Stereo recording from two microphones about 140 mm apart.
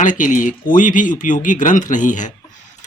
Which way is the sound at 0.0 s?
65° left (ahead or behind).